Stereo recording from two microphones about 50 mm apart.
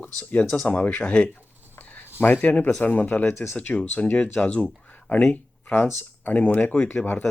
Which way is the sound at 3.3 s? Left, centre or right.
Left.